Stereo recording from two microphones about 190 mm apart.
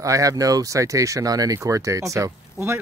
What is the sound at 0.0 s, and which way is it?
Speech, 15° right (ahead or behind).